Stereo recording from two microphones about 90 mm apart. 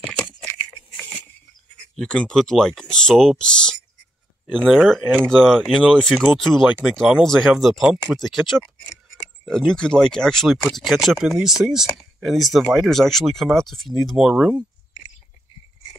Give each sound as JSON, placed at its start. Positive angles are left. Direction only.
{"t": 0.0, "sound": "a sound", "side_deg": 5}
{"t": 2.0, "sound": "speech", "side_deg": 10}
{"t": 14.3, "sound": "speech", "side_deg": -15}